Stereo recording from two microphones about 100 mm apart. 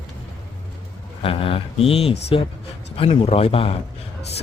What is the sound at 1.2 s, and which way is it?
Speech, 70° left (ahead or behind).